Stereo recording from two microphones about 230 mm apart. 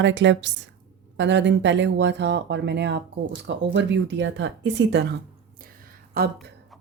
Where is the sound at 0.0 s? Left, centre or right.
Right.